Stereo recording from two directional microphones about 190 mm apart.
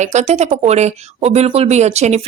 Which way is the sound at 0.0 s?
35° right (ahead or behind).